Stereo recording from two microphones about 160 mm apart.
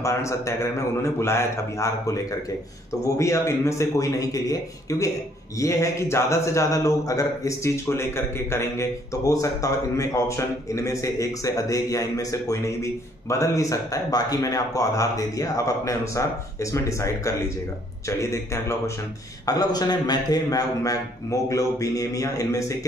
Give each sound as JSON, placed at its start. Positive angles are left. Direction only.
{"t": 0.0, "sound": "a man's voice", "side_deg": 20}